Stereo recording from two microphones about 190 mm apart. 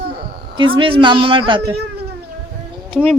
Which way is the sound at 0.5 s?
25° right (ahead or behind).